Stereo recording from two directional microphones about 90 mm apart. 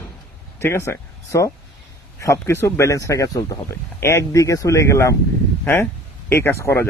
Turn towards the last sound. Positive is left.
turn(degrees=25)  # may be behind; listen again after turning